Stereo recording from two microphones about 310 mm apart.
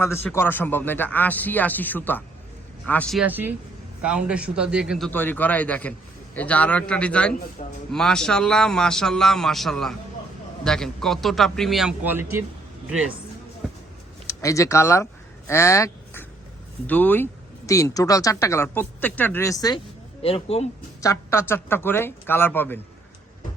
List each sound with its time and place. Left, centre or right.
0.0 s a man's voice: centre
7.6 s a man's voice: left
7.9 s a man's voice: centre
13.6 s a sound: centre
14.3 s speech: centre
15.4 s a sound: centre
16.8 s a man's voice: centre